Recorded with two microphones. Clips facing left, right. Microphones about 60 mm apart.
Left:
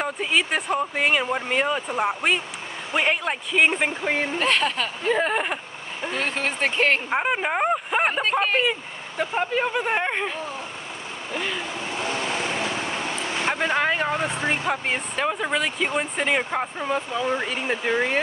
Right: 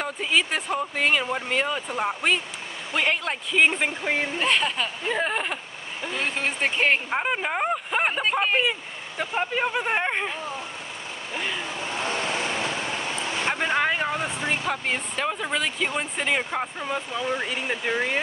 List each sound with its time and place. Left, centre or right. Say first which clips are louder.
0.0 s speech: left 1 dB; centre
6.1 s speech: left 1 dB; centre
7.1 s speech: left 2 dB; centre
8.2 s speech: left 1 dB; centre
13.6 s vehicle: left 1 dB; centre
14.6 s speech: left 2 dB; centre
17.2 s speech: left 2 dB; left
17.5 s speech: left 2 dB; centre